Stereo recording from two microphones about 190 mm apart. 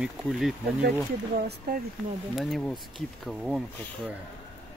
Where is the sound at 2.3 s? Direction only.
Centre (ahead or behind).